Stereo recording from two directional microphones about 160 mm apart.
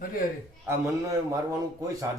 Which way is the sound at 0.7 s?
20° right (ahead or behind).